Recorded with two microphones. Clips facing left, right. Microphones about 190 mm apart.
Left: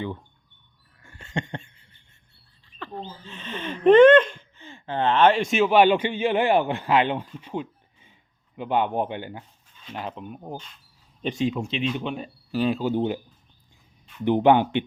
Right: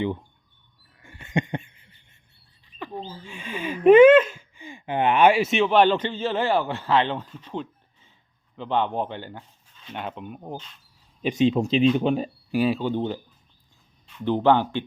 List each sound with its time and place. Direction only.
0.0 s speech: 15° right (ahead or behind)
1.0 s a sound: 15° right (ahead or behind)
2.6 s speech: 15° right (ahead or behind); by 9.4 s 15° left (ahead or behind)
9.9 s speech: centre (ahead or behind)
11.3 s speech: 25° right (ahead or behind)
11.6 s speech: 40° right (ahead or behind)
12.5 s speech: 5° right (ahead or behind)
12.8 s speech: 10° left (ahead or behind)
14.2 s speech: 15° left (ahead or behind)